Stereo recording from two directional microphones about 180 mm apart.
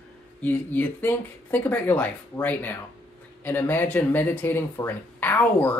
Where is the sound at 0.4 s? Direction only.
10° left (ahead or behind).